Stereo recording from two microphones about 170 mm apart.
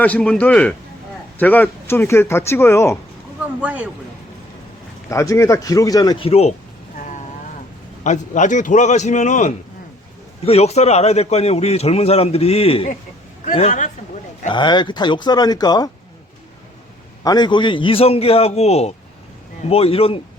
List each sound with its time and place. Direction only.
0.0 s speech: 5° left (ahead or behind)
3.4 s speech: 10° right (ahead or behind)
5.0 s speech: 20° left (ahead or behind)
6.2 s a man's voice: 35° left (ahead or behind)
8.0 s a man's voice: 45° left (ahead or behind)
13.4 s a man's voice: 45° left (ahead or behind)
14.5 s speech: 25° left (ahead or behind)
17.2 s a man's voice: 25° left (ahead or behind)